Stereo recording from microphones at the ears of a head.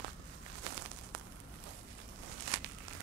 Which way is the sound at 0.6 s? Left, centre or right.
Right.